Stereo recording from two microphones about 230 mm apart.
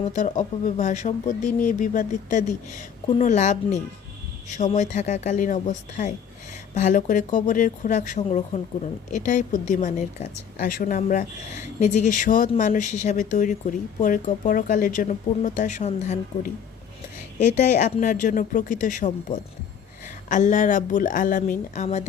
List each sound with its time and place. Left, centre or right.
0.1 s speech: left
17.6 s speech: left
20.3 s a woman's voice: left